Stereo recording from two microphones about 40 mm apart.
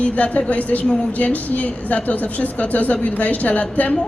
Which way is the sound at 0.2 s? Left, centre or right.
Left.